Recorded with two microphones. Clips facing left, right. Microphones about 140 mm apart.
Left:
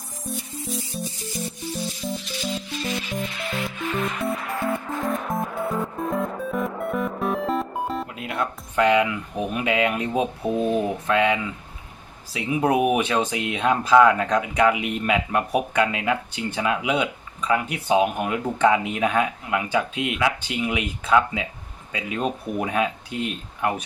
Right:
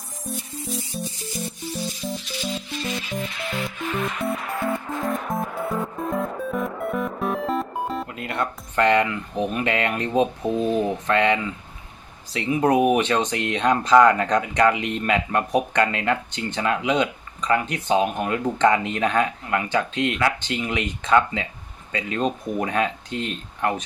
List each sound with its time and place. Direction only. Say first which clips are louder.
0.3 s music: even; centre (ahead or behind)
2.8 s music: left 1 dB; centre (ahead or behind)
12.3 s speech: right 2 dB; 5° left (ahead or behind)